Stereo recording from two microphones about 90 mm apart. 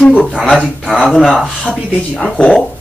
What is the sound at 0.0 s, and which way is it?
Speech, 10° left (ahead or behind).